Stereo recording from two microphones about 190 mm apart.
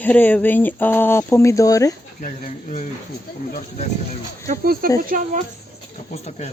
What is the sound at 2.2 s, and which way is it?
Speech, 40° left (ahead or behind).